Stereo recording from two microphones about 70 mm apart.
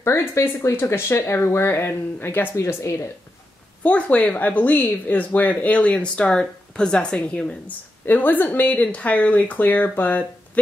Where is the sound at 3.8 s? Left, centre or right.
Left.